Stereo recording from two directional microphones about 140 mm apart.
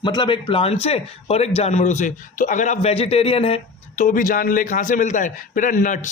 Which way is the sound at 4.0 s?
75° left (ahead or behind).